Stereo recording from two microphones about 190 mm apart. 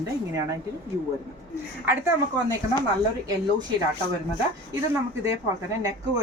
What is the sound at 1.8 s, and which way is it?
Speech, 15° right (ahead or behind).